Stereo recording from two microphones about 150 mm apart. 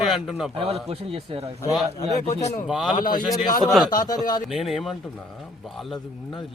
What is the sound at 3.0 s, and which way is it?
Speech, 65° left (ahead or behind).